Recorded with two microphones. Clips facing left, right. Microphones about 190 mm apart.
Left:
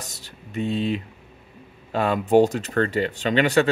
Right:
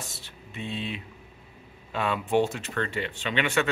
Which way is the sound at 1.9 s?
40° left (ahead or behind).